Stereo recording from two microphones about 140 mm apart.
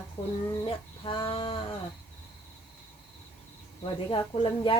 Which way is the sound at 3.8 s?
40° left (ahead or behind).